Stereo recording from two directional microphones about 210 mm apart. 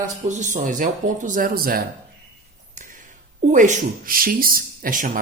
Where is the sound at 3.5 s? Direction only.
35° right (ahead or behind).